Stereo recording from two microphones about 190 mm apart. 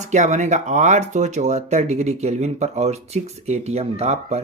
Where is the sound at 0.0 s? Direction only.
40° right (ahead or behind).